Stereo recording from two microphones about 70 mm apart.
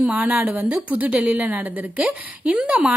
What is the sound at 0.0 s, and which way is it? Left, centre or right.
Speech, right.